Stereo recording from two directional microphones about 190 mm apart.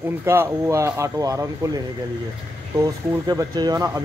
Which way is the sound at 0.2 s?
10° right (ahead or behind).